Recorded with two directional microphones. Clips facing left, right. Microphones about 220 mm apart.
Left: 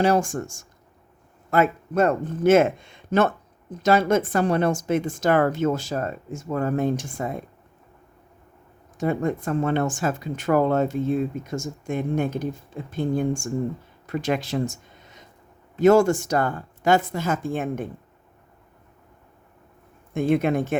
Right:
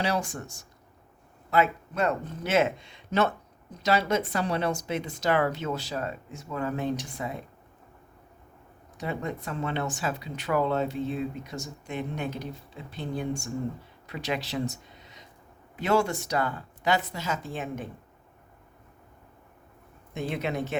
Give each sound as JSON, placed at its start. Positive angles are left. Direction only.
{"t": 0.0, "sound": "speech", "side_deg": 50}
{"t": 9.0, "sound": "speech", "side_deg": 50}
{"t": 20.1, "sound": "speech", "side_deg": 50}